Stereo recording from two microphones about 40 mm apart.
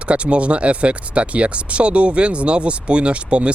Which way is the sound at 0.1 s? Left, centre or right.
Right.